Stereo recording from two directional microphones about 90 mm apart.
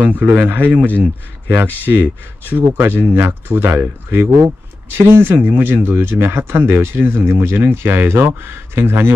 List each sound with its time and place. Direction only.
0.0 s speech: 20° right (ahead or behind)